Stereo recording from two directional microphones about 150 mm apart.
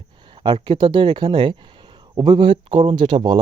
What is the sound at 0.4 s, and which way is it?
Speech, 30° right (ahead or behind).